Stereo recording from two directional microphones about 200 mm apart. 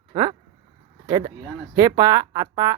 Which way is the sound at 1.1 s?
20° right (ahead or behind).